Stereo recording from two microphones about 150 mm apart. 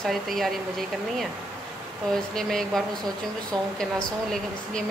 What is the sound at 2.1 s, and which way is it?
Speech, 5° left (ahead or behind).